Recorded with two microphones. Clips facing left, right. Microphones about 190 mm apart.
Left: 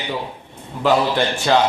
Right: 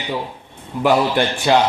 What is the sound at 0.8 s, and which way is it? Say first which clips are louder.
Speech: right 1 dB; 15° right (ahead or behind).